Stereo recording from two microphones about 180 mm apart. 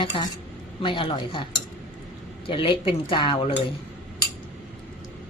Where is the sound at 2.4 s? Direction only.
25° left (ahead or behind).